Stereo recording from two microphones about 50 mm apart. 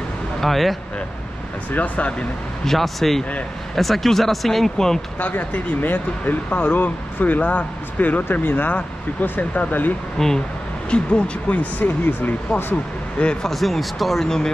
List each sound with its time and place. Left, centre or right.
0.4 s speech: centre
1.7 s speech: left
2.6 s speech: centre
5.2 s speech: left
10.1 s speech: centre
10.9 s speech: left
11.8 s speech: left
13.2 s speech: centre
13.5 s speech: centre